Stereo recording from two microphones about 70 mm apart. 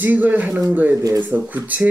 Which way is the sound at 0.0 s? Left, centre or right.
Right.